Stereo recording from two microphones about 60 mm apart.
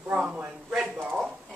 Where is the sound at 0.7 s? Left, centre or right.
Centre.